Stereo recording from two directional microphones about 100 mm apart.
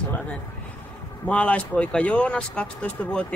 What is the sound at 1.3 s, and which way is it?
Speech, 10° left (ahead or behind).